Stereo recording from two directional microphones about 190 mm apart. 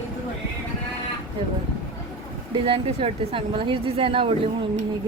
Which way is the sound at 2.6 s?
30° right (ahead or behind).